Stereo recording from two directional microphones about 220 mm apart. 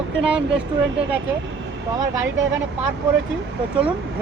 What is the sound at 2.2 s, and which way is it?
Speech, 55° right (ahead or behind).